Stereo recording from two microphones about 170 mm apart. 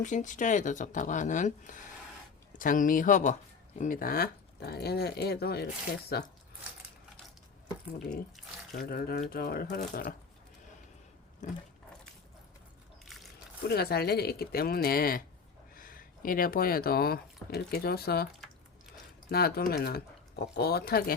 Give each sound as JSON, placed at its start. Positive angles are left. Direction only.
{"t": 0.0, "sound": "speech", "side_deg": 45}
{"t": 8.7, "sound": "speech", "side_deg": 65}
{"t": 11.4, "sound": "speech", "side_deg": 45}
{"t": 13.7, "sound": "speech", "side_deg": 70}
{"t": 19.3, "sound": "speech", "side_deg": 65}